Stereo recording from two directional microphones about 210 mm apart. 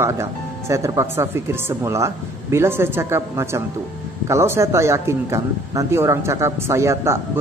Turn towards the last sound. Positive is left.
turn(degrees=-15)  # may be behind; listen again after turning